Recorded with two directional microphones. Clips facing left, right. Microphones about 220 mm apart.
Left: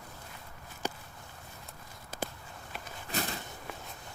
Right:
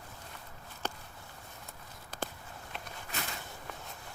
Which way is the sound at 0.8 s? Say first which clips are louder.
Left 3 dB; 10° left (ahead or behind).